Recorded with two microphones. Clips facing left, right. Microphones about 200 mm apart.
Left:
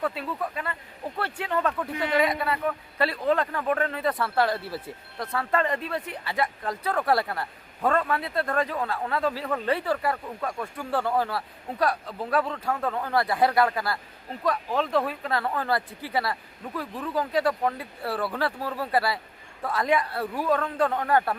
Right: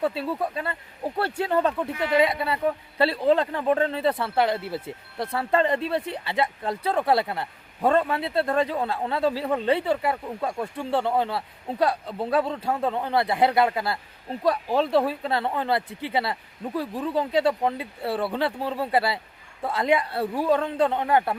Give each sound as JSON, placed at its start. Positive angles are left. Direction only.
{"t": 0.0, "sound": "speech", "side_deg": -30}
{"t": 1.8, "sound": "speech", "side_deg": -25}